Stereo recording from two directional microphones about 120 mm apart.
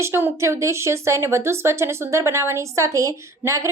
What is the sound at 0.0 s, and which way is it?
A woman's voice, 20° right (ahead or behind).